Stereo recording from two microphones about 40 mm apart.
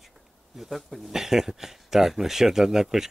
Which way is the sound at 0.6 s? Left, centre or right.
Centre.